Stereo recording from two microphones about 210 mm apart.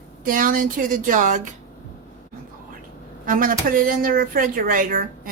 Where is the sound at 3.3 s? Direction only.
40° right (ahead or behind).